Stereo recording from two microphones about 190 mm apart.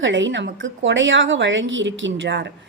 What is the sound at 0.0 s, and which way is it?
A woman's voice, 75° right (ahead or behind).